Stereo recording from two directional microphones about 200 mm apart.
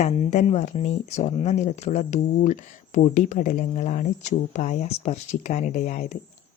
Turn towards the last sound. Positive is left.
turn(degrees=35)  # may be behind; listen again after turning